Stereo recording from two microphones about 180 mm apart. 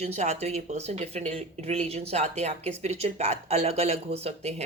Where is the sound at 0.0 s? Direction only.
40° right (ahead or behind).